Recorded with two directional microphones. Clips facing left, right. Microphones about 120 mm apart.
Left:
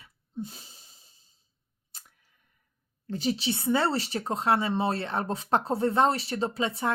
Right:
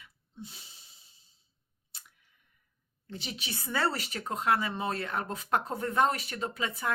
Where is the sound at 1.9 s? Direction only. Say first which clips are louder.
Left 2 dB; 40° left (ahead or behind).